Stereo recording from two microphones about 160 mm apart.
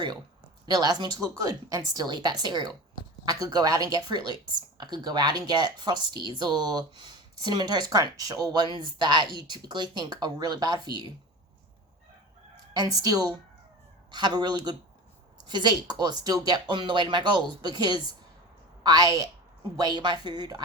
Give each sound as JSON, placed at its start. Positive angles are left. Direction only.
{"t": 0.6, "sound": "speech", "side_deg": -25}
{"t": 12.7, "sound": "speech", "side_deg": -25}